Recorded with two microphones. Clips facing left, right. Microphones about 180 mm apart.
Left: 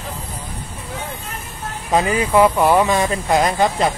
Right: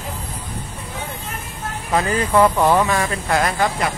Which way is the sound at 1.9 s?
15° left (ahead or behind).